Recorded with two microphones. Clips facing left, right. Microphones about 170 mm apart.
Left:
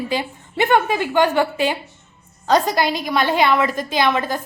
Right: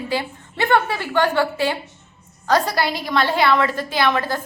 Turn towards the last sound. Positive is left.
turn(degrees=15)  # may be behind; listen again after turning